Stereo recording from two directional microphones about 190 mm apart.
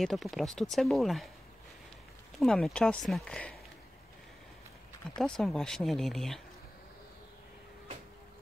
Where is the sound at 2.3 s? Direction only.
Centre (ahead or behind).